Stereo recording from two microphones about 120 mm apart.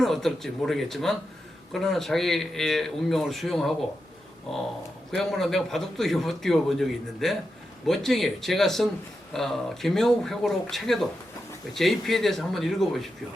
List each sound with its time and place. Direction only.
0.0 s a man's voice: centre (ahead or behind)